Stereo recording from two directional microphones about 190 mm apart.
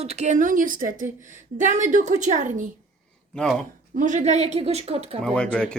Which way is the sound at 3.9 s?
40° right (ahead or behind).